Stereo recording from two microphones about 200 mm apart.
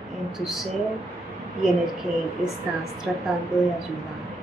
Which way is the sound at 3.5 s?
15° left (ahead or behind).